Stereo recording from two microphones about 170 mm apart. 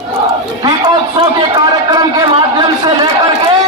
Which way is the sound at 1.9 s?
25° right (ahead or behind).